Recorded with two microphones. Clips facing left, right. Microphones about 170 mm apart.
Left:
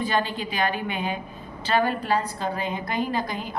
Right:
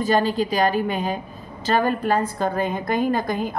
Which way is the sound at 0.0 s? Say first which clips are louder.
Right 6 dB; 40° right (ahead or behind).